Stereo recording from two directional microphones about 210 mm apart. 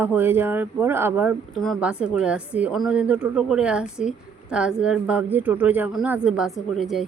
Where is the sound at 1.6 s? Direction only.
Centre (ahead or behind).